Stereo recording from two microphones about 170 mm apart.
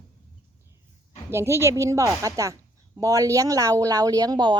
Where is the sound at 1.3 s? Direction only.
15° right (ahead or behind).